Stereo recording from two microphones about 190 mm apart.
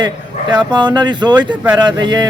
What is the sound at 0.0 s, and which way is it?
Speech, 25° right (ahead or behind).